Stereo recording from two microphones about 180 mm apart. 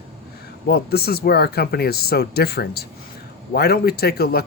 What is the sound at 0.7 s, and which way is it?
Speech, 60° left (ahead or behind).